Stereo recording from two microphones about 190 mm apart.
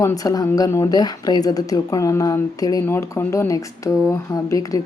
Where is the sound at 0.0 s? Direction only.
15° left (ahead or behind).